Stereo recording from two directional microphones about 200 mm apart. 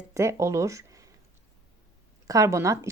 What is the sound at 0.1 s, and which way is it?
Speech, 15° right (ahead or behind).